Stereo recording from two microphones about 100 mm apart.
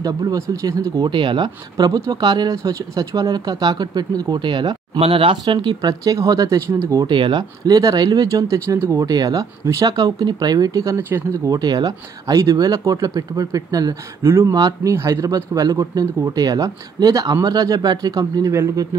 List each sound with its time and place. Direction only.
0.0 s speech: 40° right (ahead or behind)
1.0 s speech: 50° right (ahead or behind)
4.9 s speech: 70° right (ahead or behind); by 6.6 s 40° right (ahead or behind)
7.1 s speech: 50° right (ahead or behind); by 9.0 s 25° right (ahead or behind)
9.0 s speech: 40° right (ahead or behind)
11.0 s speech: 25° right (ahead or behind)
11.5 s speech: 40° right (ahead or behind)
14.2 s speech: 25° right (ahead or behind)